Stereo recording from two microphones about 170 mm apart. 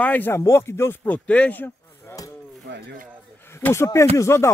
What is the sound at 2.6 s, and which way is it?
Speech, 80° right.